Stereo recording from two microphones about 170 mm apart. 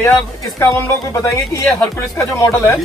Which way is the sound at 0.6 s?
15° left (ahead or behind).